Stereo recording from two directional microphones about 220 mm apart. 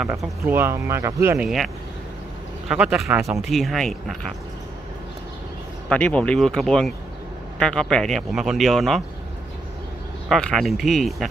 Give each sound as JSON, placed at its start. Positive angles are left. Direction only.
{"t": 0.0, "sound": "speech", "side_deg": -10}
{"t": 2.7, "sound": "speech", "side_deg": -5}
{"t": 5.9, "sound": "speech", "side_deg": 5}
{"t": 10.2, "sound": "speech", "side_deg": 0}